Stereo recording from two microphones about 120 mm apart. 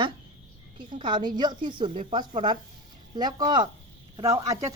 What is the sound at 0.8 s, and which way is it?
A woman's voice, 40° right (ahead or behind).